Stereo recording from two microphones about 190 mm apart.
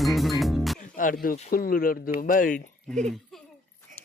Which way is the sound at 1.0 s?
45° left (ahead or behind).